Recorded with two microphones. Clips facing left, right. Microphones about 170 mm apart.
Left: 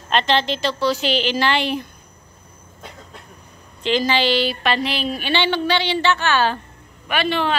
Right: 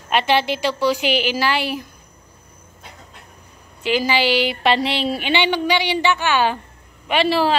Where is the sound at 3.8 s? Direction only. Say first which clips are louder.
Even; 10° right (ahead or behind).